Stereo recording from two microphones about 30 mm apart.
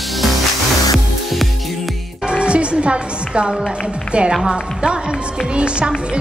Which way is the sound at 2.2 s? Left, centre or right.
Right.